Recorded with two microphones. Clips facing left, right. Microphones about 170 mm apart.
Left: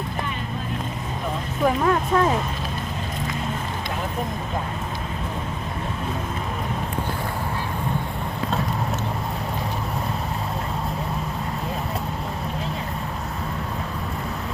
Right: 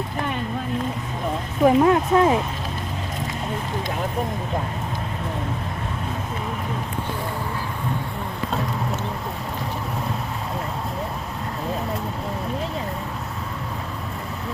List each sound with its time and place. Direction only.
1.6 s speech: 20° right (ahead or behind)